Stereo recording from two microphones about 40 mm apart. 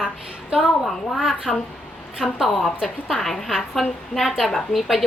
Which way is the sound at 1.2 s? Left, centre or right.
Centre.